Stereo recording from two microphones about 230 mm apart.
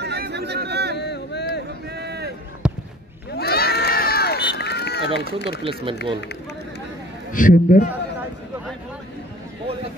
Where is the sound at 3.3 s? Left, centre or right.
Left.